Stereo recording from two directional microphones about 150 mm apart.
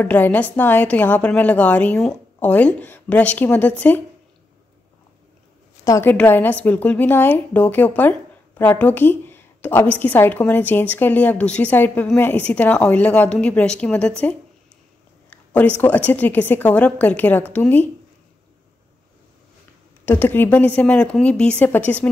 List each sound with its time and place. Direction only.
0.0 s a woman's voice: 10° left (ahead or behind)
5.9 s a woman's voice: 20° left (ahead or behind)
15.2 s a sound: 10° left (ahead or behind)
15.8 s a woman's voice: 10° left (ahead or behind)
20.1 s a woman's voice: 15° left (ahead or behind)